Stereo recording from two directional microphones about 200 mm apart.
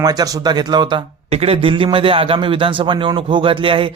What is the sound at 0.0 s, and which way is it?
Speech, 20° right (ahead or behind).